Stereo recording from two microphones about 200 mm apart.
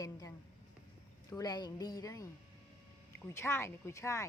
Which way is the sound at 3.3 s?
10° left (ahead or behind).